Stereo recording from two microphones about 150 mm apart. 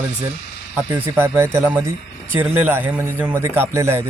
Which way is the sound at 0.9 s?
15° right (ahead or behind).